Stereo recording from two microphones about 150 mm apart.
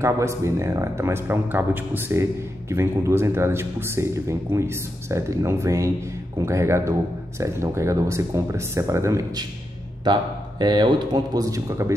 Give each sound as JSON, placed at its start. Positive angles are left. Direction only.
{"t": 0.0, "sound": "speech", "side_deg": -20}